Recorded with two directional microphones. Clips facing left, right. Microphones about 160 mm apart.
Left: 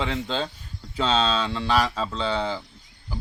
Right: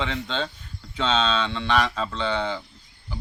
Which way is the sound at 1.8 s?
5° left (ahead or behind).